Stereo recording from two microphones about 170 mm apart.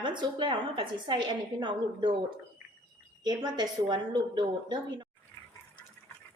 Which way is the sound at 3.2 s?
25° right (ahead or behind).